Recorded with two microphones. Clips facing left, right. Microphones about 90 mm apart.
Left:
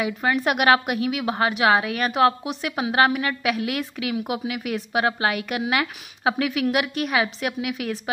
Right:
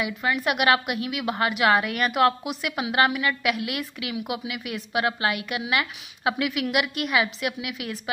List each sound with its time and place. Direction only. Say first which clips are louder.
0.0 s a woman's voice: left 3 dB; 40° left (ahead or behind)